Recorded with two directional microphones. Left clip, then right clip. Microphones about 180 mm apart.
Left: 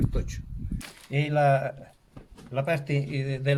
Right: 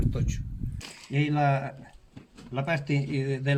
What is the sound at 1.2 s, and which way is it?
Speech, 55° left (ahead or behind).